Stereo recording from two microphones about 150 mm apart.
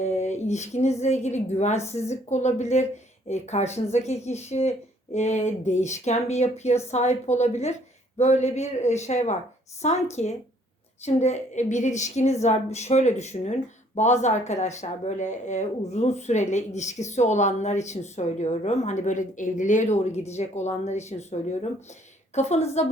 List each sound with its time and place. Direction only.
0.0 s a woman's voice: 50° left (ahead or behind)